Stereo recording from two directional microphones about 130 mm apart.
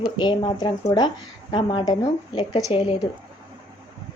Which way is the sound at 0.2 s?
35° left (ahead or behind).